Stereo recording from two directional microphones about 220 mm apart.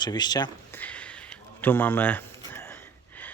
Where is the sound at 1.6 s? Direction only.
10° left (ahead or behind).